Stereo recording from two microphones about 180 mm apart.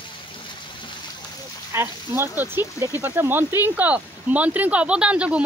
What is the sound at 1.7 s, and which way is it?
Speech, 15° right (ahead or behind).